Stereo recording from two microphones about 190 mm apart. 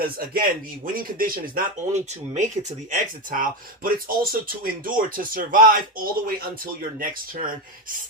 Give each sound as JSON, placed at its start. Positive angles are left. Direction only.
{"t": 0.0, "sound": "speech", "side_deg": -50}